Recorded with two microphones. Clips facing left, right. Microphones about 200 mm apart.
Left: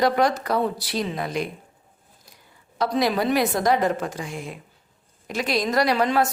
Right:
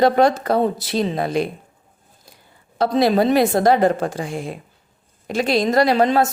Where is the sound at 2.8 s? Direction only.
30° right (ahead or behind).